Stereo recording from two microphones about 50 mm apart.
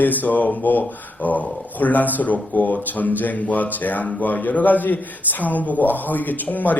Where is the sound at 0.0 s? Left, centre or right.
Left.